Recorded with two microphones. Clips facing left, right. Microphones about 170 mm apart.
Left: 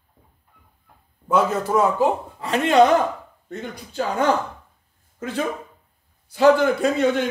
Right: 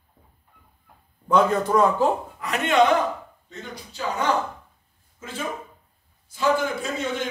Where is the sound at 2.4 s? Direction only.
30° left (ahead or behind).